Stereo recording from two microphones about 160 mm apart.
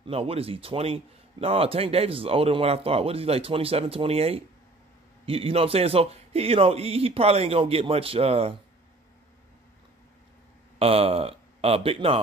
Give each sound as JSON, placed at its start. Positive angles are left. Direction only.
{"t": 0.0, "sound": "speech", "side_deg": -40}
{"t": 10.8, "sound": "speech", "side_deg": -35}